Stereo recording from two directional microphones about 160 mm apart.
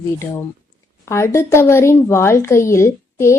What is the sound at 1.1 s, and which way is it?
A woman's voice, 15° left (ahead or behind).